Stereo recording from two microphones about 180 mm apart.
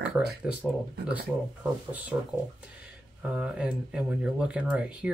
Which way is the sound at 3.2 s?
5° right (ahead or behind).